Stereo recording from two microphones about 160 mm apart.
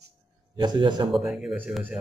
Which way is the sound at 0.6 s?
30° right (ahead or behind).